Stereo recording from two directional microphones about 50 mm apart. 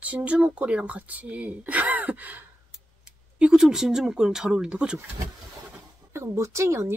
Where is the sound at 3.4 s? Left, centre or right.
Centre.